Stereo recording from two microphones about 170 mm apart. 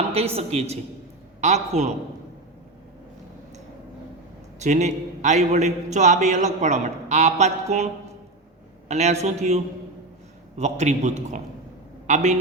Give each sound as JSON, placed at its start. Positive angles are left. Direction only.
{"t": 0.1, "sound": "a woman's voice", "side_deg": -35}
{"t": 4.6, "sound": "a man's voice", "side_deg": -45}
{"t": 8.9, "sound": "a woman's voice", "side_deg": -40}
{"t": 10.6, "sound": "a man's voice", "side_deg": -45}